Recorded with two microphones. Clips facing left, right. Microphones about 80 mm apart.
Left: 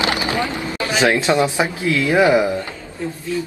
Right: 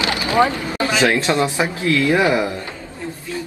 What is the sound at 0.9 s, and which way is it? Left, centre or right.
Speech, centre.